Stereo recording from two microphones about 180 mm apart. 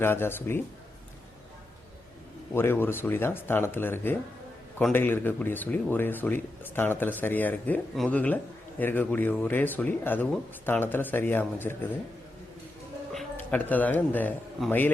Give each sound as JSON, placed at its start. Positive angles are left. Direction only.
{"t": 0.0, "sound": "speech", "side_deg": 10}
{"t": 2.5, "sound": "speech", "side_deg": 15}
{"t": 13.1, "sound": "speech", "side_deg": 10}